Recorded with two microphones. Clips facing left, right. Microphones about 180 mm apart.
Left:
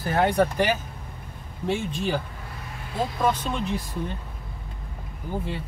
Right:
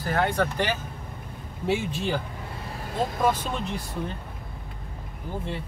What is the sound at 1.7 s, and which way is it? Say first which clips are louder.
Speech: even; 5° right (ahead or behind).